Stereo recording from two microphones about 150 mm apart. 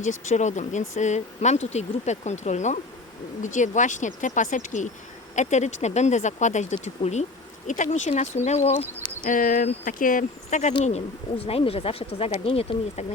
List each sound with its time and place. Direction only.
0.0 s speech: 55° left (ahead or behind)
9.2 s speech: 65° left (ahead or behind); by 13.1 s 40° left (ahead or behind)